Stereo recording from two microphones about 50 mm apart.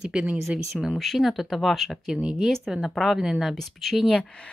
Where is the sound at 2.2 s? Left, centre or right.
Centre.